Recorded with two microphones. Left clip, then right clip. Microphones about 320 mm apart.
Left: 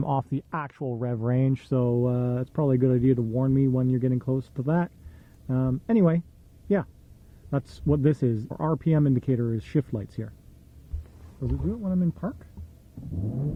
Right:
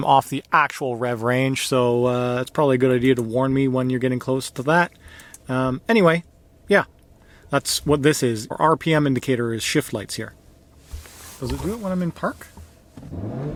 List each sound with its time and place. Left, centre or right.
0.0 s speech: centre
7.5 s speech: centre